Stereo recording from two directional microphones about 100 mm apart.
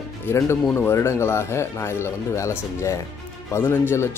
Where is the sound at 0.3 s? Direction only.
25° left (ahead or behind).